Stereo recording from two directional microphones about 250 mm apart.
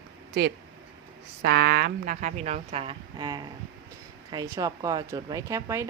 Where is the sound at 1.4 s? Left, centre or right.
Right.